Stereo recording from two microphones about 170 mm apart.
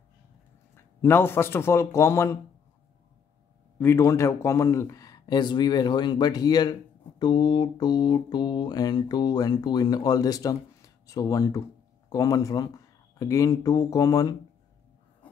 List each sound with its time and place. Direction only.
0.7 s speech: 15° left (ahead or behind)
3.8 s speech: 15° left (ahead or behind)